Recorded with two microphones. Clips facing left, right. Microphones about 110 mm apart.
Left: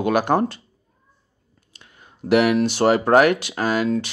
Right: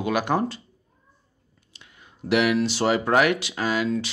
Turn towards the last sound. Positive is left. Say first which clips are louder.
# left 4 dB
turn(degrees=45)  # may be behind; listen again after turning